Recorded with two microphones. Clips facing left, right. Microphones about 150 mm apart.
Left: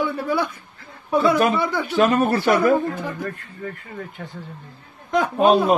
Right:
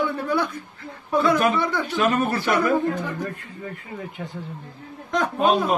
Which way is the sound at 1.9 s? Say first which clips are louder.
Left 5 dB; 40° left (ahead or behind).